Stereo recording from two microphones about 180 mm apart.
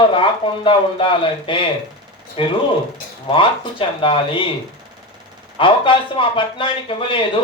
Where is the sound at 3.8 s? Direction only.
30° left (ahead or behind).